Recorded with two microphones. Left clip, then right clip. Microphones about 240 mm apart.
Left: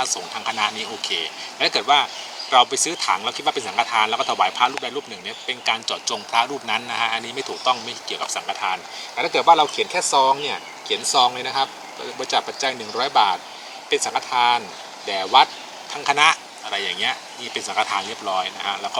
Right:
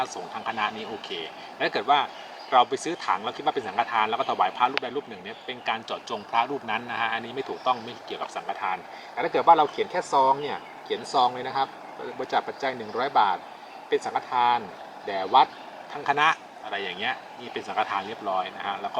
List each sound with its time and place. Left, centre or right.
0.0 s speech: centre